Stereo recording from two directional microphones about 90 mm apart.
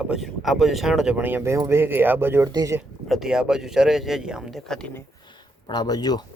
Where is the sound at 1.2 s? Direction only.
20° right (ahead or behind).